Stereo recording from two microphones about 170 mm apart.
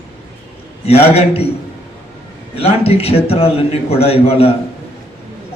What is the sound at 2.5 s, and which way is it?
A man's voice, 35° left (ahead or behind).